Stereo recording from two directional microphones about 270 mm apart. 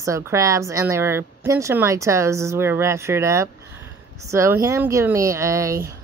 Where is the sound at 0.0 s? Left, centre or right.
Centre.